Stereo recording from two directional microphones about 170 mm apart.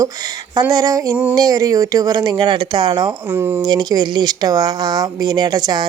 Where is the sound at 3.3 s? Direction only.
15° right (ahead or behind).